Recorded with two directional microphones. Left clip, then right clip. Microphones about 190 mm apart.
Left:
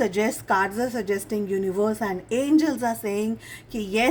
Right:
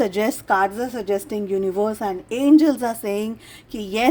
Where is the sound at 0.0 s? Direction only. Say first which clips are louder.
Right 3 dB; 40° right (ahead or behind).